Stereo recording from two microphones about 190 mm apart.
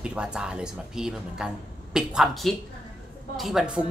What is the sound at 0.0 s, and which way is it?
A woman's voice, 5° right (ahead or behind).